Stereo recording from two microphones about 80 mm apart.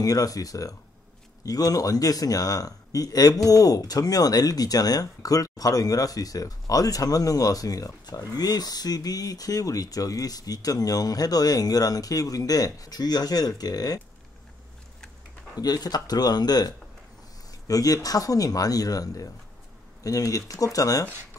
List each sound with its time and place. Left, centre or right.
0.0 s speech: left
15.6 s speech: left